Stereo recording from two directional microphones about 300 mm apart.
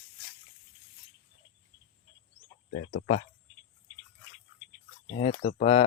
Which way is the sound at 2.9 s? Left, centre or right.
Left.